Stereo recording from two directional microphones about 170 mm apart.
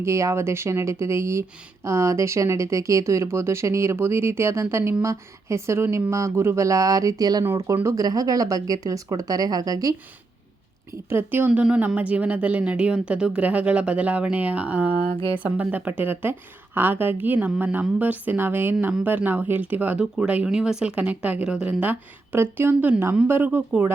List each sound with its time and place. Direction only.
0.0 s speech: 15° right (ahead or behind)
11.1 s speech: 10° right (ahead or behind)